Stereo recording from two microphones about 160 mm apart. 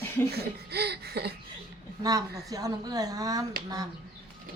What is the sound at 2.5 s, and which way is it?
Speech, 20° right (ahead or behind).